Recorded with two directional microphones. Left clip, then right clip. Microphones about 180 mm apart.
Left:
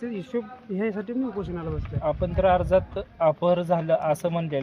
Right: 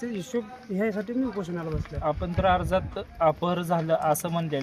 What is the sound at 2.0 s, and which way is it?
Speech, 35° left (ahead or behind).